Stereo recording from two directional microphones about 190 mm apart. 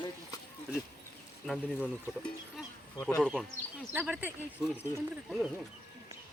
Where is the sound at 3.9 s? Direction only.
10° right (ahead or behind).